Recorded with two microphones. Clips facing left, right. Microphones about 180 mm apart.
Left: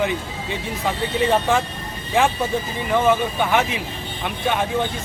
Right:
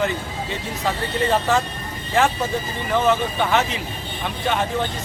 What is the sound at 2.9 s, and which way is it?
Speech, 15° left (ahead or behind).